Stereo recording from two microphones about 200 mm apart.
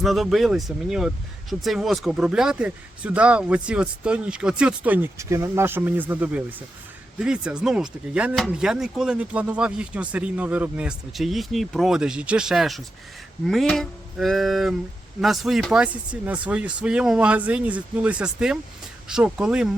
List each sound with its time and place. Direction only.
0.0 s speech: centre (ahead or behind)